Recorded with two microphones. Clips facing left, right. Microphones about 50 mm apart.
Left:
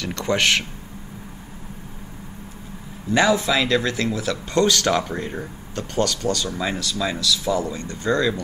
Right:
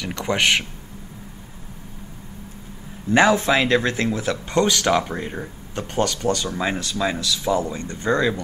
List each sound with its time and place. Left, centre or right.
0.0 s speech: centre
3.1 s speech: right; by 5.5 s centre
5.8 s speech: right